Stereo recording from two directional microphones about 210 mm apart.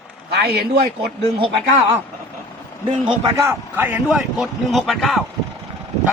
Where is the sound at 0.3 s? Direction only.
50° right (ahead or behind).